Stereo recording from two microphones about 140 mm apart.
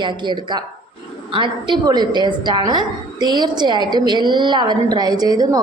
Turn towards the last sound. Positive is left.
turn(degrees=-30)  # may be behind; listen again after turning